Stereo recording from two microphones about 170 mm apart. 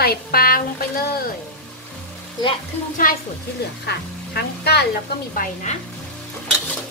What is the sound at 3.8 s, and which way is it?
Speech, 75° left (ahead or behind).